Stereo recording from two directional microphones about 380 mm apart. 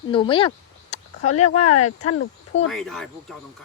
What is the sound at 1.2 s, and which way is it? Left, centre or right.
Speech, left.